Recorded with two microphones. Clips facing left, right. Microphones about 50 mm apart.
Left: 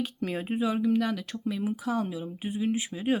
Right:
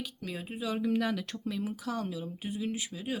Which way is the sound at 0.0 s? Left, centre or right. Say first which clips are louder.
Left 8 dB; left.